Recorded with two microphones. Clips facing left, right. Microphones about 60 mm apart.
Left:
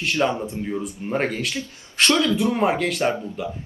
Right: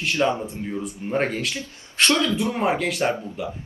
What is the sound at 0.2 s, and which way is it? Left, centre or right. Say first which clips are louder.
Speech: right 1 dB; centre.